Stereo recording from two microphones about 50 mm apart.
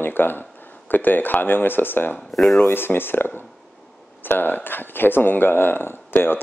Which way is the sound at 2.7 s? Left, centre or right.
Left.